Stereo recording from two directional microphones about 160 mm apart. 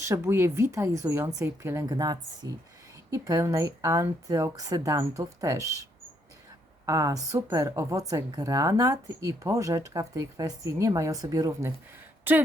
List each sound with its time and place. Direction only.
0.0 s speech: 15° right (ahead or behind)